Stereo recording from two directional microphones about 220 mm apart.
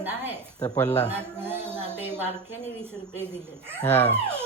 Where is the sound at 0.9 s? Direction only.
30° left (ahead or behind).